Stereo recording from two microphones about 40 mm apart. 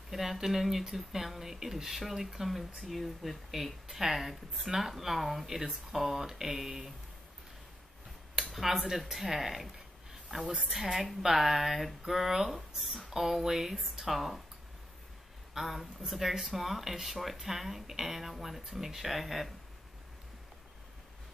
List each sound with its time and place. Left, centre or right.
0.1 s speech: centre
8.4 s speech: centre
15.5 s speech: centre